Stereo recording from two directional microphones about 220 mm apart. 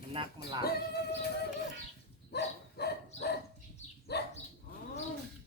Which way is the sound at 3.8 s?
30° left (ahead or behind).